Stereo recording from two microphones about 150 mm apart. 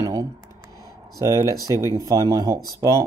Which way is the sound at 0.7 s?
25° left (ahead or behind).